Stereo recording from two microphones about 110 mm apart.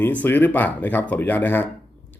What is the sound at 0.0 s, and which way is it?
Speech, 15° left (ahead or behind).